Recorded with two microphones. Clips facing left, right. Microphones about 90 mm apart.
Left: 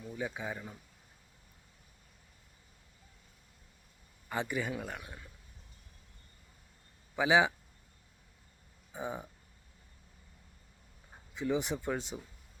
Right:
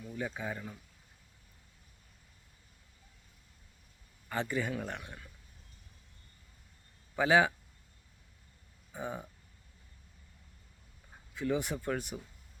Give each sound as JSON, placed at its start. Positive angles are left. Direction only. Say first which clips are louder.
{"t": 0.0, "sound": "speech", "louder": "even", "side_deg": 10}
{"t": 4.3, "sound": "speech", "louder": "right 1 dB", "side_deg": 15}
{"t": 7.2, "sound": "speech", "louder": "right 1 dB", "side_deg": 15}
{"t": 8.9, "sound": "speech", "louder": "left 1 dB", "side_deg": 15}
{"t": 11.1, "sound": "speech", "louder": "even", "side_deg": 15}